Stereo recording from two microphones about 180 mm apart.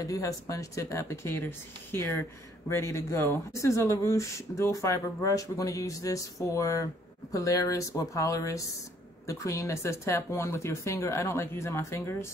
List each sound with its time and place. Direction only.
0.0 s speech: 20° left (ahead or behind)